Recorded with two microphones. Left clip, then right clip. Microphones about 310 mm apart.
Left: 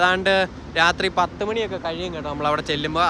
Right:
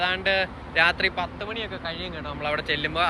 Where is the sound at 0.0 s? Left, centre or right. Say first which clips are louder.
Left 5 dB; centre.